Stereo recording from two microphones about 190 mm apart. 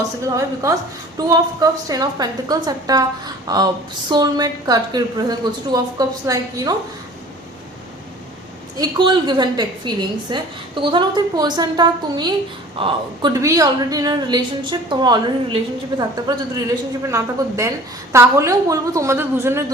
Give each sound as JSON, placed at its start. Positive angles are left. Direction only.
{"t": 0.3, "sound": "a woman's voice", "side_deg": -15}
{"t": 8.8, "sound": "a woman's voice", "side_deg": -25}